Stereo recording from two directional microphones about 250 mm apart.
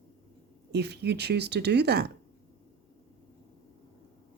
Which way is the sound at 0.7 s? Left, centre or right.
Right.